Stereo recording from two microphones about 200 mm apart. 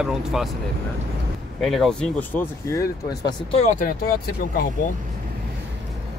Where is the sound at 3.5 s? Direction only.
35° left (ahead or behind).